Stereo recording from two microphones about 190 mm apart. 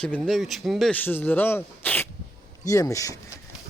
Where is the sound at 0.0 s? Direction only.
5° left (ahead or behind).